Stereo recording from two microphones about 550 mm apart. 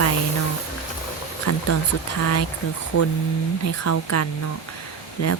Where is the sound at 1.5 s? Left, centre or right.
Left.